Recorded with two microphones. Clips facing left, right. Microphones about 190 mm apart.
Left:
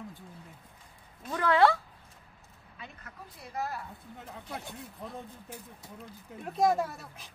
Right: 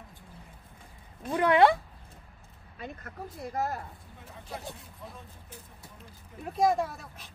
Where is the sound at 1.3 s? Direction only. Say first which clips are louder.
Right 3 dB; 15° right (ahead or behind).